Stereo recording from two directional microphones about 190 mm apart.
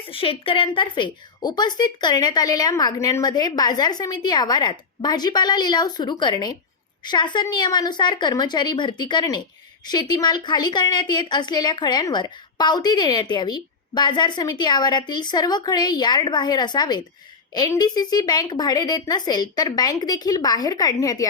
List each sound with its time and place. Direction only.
0.1 s a woman's voice: 30° left (ahead or behind)